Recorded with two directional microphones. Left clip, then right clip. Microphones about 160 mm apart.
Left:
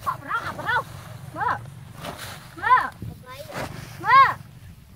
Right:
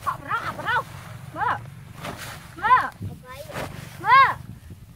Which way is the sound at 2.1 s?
Centre (ahead or behind).